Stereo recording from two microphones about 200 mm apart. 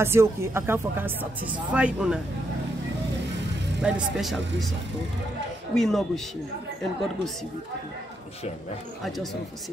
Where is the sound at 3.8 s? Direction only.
5° right (ahead or behind).